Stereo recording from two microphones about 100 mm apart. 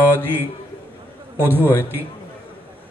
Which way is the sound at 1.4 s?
20° right (ahead or behind).